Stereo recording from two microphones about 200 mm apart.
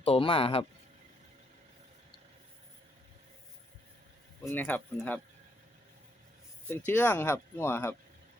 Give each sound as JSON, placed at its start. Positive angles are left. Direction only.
{"t": 0.0, "sound": "speech", "side_deg": 30}
{"t": 4.4, "sound": "speech", "side_deg": 10}
{"t": 6.7, "sound": "speech", "side_deg": 10}